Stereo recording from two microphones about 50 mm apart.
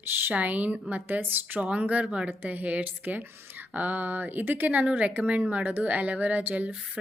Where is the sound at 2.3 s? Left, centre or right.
Right.